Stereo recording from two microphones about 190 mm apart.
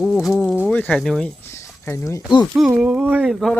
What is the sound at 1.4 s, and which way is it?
Speech, 15° left (ahead or behind).